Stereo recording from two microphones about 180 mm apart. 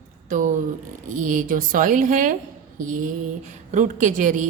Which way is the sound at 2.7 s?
45° right (ahead or behind).